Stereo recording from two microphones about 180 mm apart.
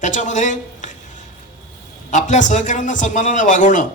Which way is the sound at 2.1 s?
40° left (ahead or behind).